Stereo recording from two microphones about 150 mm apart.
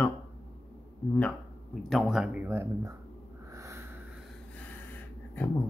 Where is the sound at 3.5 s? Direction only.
20° right (ahead or behind).